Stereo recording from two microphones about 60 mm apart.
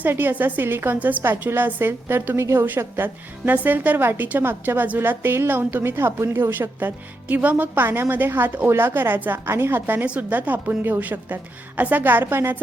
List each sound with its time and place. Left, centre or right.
0.0 s a woman's voice: right
0.9 s a woman's voice: right
1.2 s a woman's voice: right
2.6 s a woman's voice: right
9.8 s a woman's voice: right